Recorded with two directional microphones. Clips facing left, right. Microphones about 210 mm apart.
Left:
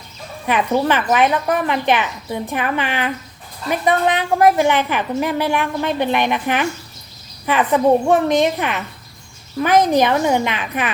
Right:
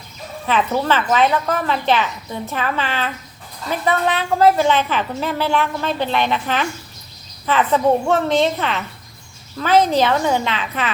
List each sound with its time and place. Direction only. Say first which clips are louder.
0.4 s a woman's voice: left 2 dB; 15° left (ahead or behind)